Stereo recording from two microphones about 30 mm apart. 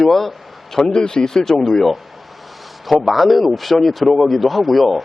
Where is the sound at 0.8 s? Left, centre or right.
Left.